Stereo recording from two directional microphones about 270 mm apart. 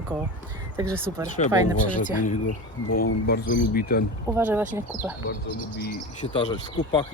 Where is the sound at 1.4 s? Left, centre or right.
Left.